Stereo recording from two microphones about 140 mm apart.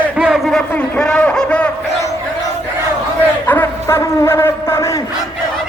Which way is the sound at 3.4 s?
15° left (ahead or behind).